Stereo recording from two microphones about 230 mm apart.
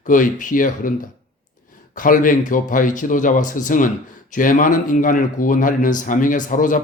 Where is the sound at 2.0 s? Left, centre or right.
Left.